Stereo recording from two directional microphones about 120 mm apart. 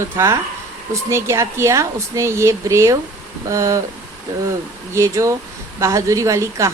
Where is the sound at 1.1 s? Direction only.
25° right (ahead or behind).